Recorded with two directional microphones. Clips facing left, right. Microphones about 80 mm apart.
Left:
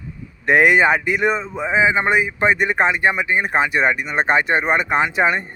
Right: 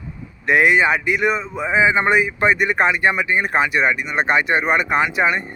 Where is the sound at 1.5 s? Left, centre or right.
Left.